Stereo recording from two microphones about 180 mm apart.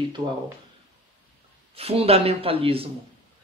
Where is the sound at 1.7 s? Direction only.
35° right (ahead or behind).